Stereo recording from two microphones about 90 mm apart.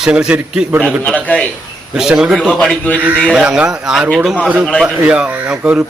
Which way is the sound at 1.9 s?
5° right (ahead or behind).